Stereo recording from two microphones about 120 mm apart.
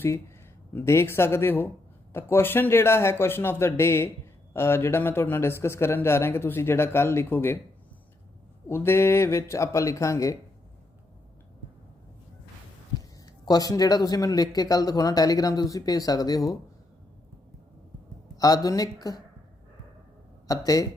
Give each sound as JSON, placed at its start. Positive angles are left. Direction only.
{"t": 0.7, "sound": "speech", "side_deg": 20}
{"t": 8.6, "sound": "speech", "side_deg": 20}
{"t": 13.4, "sound": "speech", "side_deg": 30}
{"t": 18.3, "sound": "speech", "side_deg": 30}
{"t": 20.5, "sound": "speech", "side_deg": 30}